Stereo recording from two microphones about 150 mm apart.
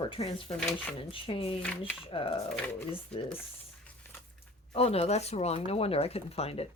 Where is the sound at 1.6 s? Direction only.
10° left (ahead or behind).